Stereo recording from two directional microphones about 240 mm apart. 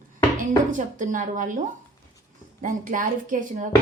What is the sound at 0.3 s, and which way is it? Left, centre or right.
Speech, right.